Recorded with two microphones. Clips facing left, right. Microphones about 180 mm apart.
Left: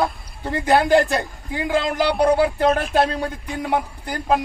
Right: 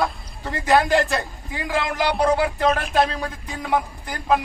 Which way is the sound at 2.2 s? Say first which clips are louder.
Left 3 dB; 30° left (ahead or behind).